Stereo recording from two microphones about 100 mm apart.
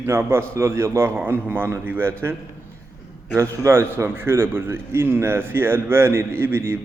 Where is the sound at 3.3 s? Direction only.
30° right (ahead or behind).